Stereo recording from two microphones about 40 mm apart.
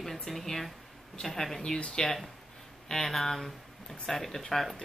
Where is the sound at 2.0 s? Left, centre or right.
Centre.